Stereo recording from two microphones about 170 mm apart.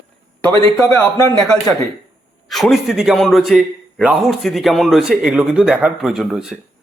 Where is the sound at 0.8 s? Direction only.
15° left (ahead or behind).